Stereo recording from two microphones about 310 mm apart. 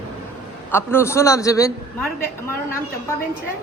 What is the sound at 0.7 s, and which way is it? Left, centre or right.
A man's voice, centre.